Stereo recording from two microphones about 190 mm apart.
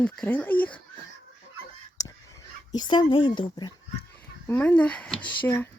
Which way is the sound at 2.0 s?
20° left (ahead or behind).